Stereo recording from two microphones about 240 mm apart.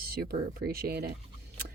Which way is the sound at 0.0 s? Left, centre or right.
Right.